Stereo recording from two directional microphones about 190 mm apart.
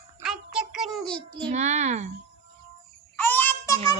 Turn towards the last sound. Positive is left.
turn(degrees=10)  # may be behind; listen again after turning